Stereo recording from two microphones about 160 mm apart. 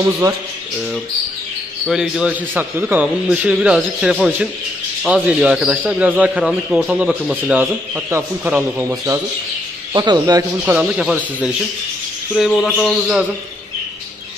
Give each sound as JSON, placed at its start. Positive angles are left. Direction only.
{"t": 0.0, "sound": "speech", "side_deg": -20}
{"t": 1.9, "sound": "a man's voice", "side_deg": -5}
{"t": 10.6, "sound": "speech", "side_deg": -5}
{"t": 12.4, "sound": "speech", "side_deg": 10}